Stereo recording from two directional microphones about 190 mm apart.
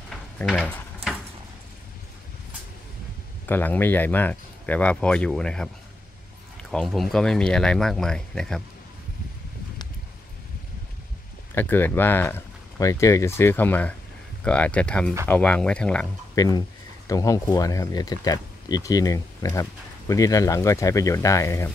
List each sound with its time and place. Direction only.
0.1 s a sound: centre (ahead or behind)
3.4 s speech: 10° left (ahead or behind)
6.7 s speech: centre (ahead or behind)
11.5 s speech: 10° left (ahead or behind)
16.3 s speech: 20° left (ahead or behind)